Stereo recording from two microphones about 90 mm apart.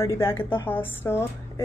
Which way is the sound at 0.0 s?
30° left (ahead or behind).